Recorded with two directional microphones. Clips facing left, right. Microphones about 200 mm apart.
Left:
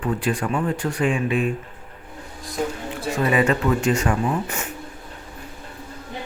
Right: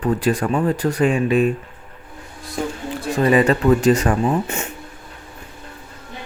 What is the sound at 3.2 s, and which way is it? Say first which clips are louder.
Speech: right 5 dB; 35° right (ahead or behind).